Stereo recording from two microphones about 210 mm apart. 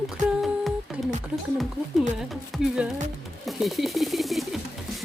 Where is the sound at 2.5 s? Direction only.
Centre (ahead or behind).